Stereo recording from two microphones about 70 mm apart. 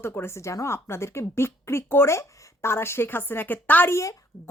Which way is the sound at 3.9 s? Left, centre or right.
Left.